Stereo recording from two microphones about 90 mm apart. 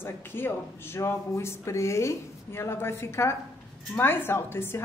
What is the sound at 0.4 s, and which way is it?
A woman's voice, 25° left (ahead or behind).